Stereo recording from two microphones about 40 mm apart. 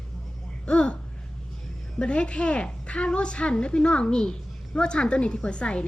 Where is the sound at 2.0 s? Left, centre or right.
Left.